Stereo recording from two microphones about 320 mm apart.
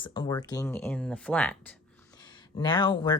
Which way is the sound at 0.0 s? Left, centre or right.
Centre.